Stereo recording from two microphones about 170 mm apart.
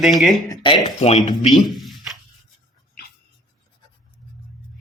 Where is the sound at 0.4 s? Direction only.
25° left (ahead or behind).